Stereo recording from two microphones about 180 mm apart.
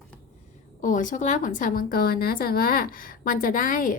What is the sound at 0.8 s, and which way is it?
A woman's voice, 45° left (ahead or behind).